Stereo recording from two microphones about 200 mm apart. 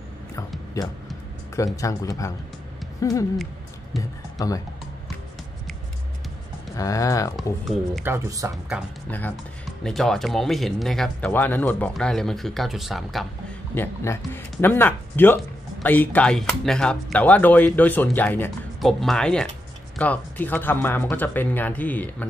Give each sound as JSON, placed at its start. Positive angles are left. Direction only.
{"t": 0.8, "sound": "speech", "side_deg": 15}
{"t": 3.0, "sound": "hoot", "side_deg": 15}
{"t": 3.9, "sound": "speech", "side_deg": 0}
{"t": 4.4, "sound": "speech", "side_deg": 15}
{"t": 6.7, "sound": "speech", "side_deg": 15}
{"t": 8.0, "sound": "speech", "side_deg": -15}
{"t": 13.7, "sound": "speech", "side_deg": 10}